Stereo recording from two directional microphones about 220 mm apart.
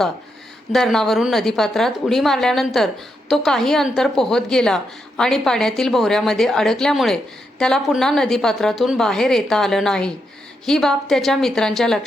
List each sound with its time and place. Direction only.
0.7 s a woman's voice: centre (ahead or behind)